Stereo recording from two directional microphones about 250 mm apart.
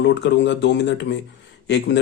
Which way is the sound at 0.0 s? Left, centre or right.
Left.